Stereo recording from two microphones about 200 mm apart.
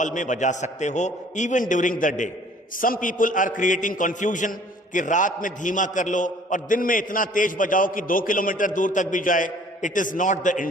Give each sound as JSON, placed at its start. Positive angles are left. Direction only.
{"t": 0.0, "sound": "a man's voice", "side_deg": 40}